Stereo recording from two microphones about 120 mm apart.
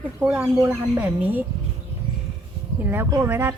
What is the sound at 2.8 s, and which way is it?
Speech, 15° right (ahead or behind).